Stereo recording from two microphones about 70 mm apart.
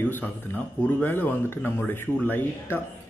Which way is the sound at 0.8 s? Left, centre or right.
Left.